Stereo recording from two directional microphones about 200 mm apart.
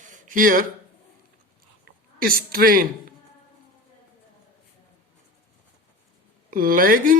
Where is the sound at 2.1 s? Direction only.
45° right (ahead or behind).